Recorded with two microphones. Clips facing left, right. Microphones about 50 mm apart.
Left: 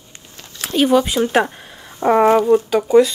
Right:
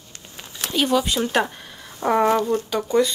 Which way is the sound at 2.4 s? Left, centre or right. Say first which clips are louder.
Left 8 dB; centre.